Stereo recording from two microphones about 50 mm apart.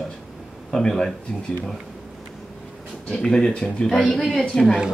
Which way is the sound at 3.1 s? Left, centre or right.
Centre.